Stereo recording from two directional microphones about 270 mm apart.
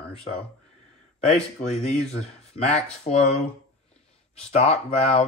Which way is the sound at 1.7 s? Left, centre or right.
Left.